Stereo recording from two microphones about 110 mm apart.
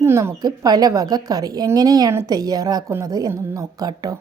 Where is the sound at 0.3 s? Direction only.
40° right (ahead or behind).